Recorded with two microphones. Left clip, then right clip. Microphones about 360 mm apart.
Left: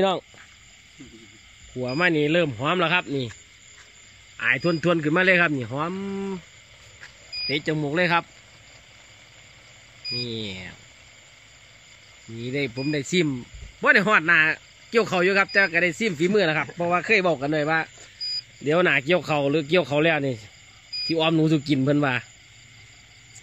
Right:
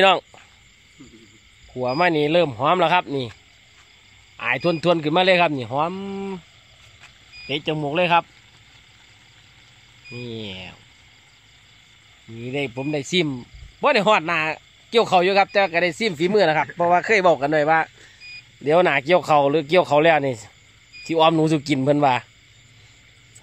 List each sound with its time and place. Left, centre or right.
1.8 s speech: centre
4.4 s speech: centre
7.4 s speech: centre
10.1 s speech: centre
12.4 s speech: centre